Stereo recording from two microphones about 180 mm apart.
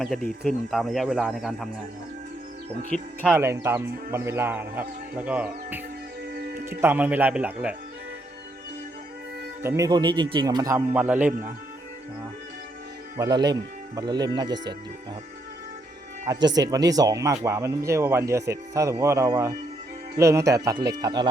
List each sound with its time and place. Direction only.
0.0 s speech: centre (ahead or behind)
2.9 s speech: 5° left (ahead or behind)
3.3 s speech: 15° right (ahead or behind)
6.3 s music: 55° right (ahead or behind)
6.7 s speech: 10° right (ahead or behind)
9.6 s speech: 20° right (ahead or behind)
13.1 s speech: 25° right (ahead or behind)
16.2 s speech: 20° right (ahead or behind)